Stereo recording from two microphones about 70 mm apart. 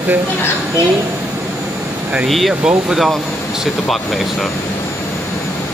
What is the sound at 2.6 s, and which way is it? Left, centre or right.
Speech, centre.